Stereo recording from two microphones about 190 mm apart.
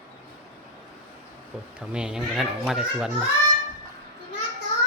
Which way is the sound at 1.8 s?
5° right (ahead or behind).